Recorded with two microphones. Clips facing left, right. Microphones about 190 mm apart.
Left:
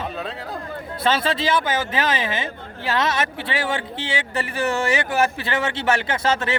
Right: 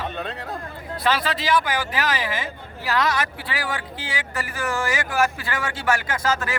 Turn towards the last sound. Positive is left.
turn(degrees=25)  # may be behind; listen again after turning